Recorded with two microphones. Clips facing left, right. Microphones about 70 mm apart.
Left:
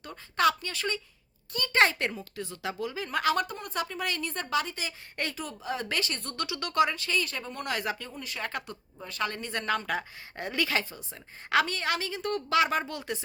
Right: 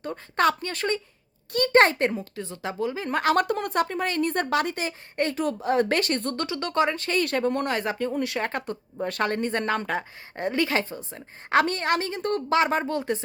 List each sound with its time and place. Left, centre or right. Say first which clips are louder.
0.0 s a woman's voice: right 3 dB; right
2.1 s a woman's voice: right 5 dB; right
3.3 s speech: right 8 dB; right
7.7 s a woman's voice: right 6 dB; right
8.1 s speech: right 13 dB; right
8.4 s a woman's voice: right 7 dB; right
9.0 s a woman's voice: right 7 dB; right
11.6 s a woman's voice: right 6 dB; right